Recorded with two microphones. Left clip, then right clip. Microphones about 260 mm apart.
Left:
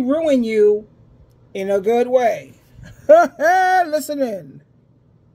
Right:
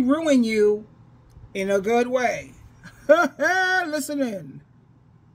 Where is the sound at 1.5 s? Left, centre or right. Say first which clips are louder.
Left 4 dB; centre.